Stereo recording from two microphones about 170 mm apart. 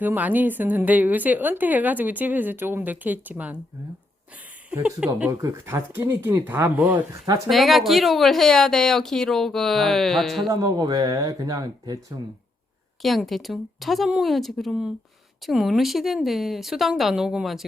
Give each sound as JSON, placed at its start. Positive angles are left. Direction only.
{"t": 0.0, "sound": "a woman's voice", "side_deg": -10}
{"t": 4.7, "sound": "a woman's voice", "side_deg": -5}
{"t": 5.4, "sound": "a woman's voice", "side_deg": -15}
{"t": 10.5, "sound": "speech", "side_deg": -20}
{"t": 13.0, "sound": "a woman's voice", "side_deg": 0}